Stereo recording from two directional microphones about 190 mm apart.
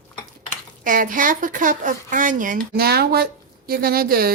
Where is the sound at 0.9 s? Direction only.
45° right (ahead or behind).